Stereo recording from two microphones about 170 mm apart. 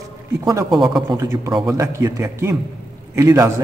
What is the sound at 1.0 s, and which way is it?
A man's voice, 20° right (ahead or behind).